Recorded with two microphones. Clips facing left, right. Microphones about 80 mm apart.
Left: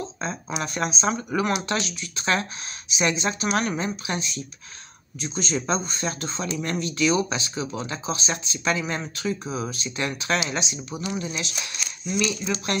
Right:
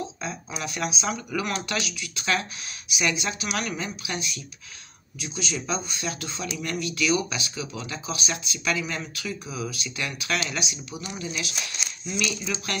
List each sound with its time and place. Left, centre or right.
0.7 s speech: left